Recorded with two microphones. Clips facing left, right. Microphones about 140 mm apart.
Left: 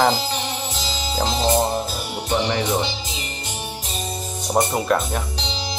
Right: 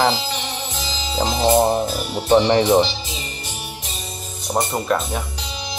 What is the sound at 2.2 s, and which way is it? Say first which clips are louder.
Speech: right 8 dB; 35° right (ahead or behind).